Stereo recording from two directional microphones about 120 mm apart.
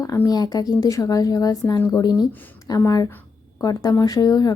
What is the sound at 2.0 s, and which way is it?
Speech, 35° left (ahead or behind).